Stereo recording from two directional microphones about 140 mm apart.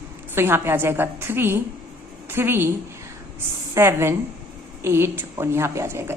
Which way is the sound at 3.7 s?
15° right (ahead or behind).